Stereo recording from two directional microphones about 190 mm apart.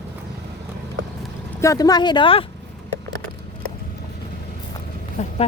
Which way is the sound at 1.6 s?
15° left (ahead or behind).